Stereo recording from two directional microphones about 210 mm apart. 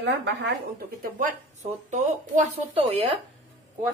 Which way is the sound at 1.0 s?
40° right (ahead or behind).